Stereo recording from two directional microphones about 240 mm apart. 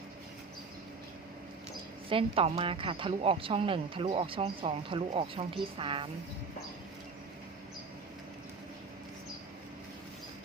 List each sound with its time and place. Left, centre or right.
2.0 s a woman's voice: right